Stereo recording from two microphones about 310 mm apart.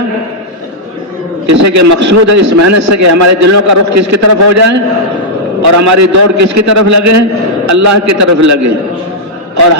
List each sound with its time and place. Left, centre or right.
1.5 s a man's voice: right